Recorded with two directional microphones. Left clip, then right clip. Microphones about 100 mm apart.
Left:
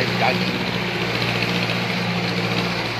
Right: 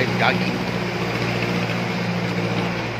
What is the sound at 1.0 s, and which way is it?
Vehicle, centre (ahead or behind).